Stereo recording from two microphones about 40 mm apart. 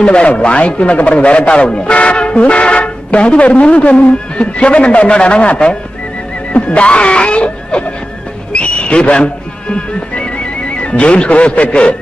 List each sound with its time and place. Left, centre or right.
0.0 s a man's voice: left